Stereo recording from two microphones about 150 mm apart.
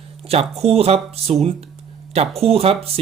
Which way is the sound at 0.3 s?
40° right (ahead or behind).